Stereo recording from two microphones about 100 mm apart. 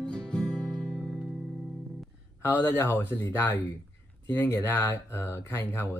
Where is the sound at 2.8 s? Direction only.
20° left (ahead or behind).